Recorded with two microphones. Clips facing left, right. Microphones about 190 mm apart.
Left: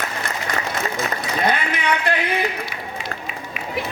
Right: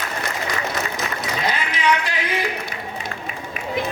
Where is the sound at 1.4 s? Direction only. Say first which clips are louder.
Even; 55° left (ahead or behind).